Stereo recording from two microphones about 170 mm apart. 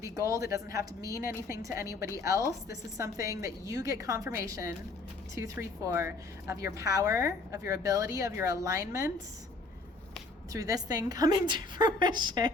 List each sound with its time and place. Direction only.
0.0 s a woman's voice: 15° right (ahead or behind)
10.5 s a woman's voice: 20° right (ahead or behind)